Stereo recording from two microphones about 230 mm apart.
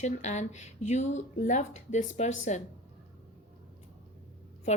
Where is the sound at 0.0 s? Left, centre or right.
Left.